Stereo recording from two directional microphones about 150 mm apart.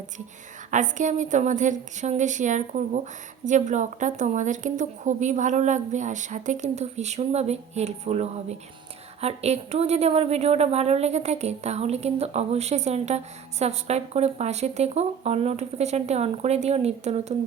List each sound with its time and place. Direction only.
0.7 s a woman's voice: 55° right (ahead or behind)